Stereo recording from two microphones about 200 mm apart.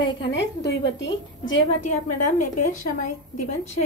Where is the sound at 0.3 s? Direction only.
60° left (ahead or behind).